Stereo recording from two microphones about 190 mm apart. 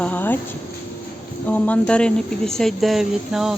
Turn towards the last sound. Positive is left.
turn(degrees=0)  # may be behind; listen again after turning